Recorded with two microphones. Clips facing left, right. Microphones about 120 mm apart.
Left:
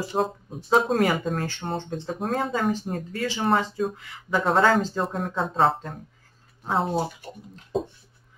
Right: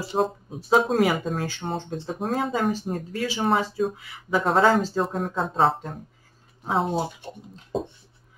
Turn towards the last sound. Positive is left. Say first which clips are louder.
# right 1 dB
turn(degrees=-25)  # may be behind; listen again after turning